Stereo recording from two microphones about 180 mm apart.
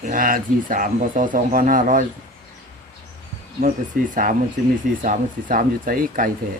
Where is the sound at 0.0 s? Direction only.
50° right (ahead or behind).